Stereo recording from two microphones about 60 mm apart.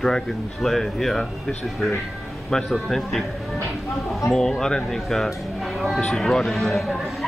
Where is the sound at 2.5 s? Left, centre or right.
Centre.